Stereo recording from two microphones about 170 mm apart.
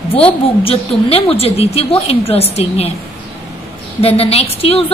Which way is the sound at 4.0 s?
35° left (ahead or behind).